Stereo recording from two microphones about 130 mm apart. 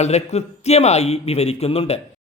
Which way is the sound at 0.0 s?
55° left (ahead or behind).